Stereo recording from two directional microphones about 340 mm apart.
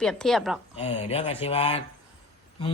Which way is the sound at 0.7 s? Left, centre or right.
Centre.